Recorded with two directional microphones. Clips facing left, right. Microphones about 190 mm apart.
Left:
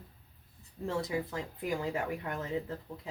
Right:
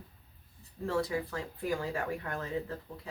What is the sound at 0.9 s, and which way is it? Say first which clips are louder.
Speech: right 2 dB; 20° left (ahead or behind).